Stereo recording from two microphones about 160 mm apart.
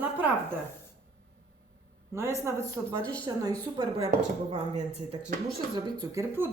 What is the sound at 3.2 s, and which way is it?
Speech, 25° right (ahead or behind).